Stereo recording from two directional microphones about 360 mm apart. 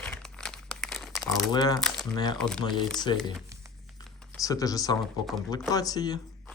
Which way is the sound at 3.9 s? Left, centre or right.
Centre.